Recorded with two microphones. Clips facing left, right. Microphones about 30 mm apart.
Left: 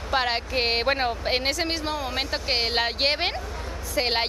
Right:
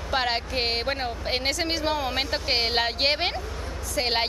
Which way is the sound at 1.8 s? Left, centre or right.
Centre.